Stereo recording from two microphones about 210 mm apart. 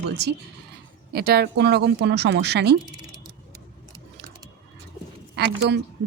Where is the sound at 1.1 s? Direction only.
50° right (ahead or behind).